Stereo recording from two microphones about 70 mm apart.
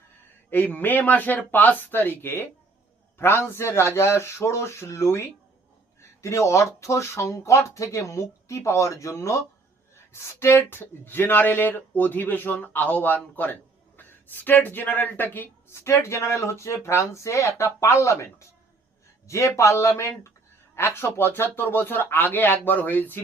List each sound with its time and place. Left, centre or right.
0.5 s speech: left
15.8 s speech: left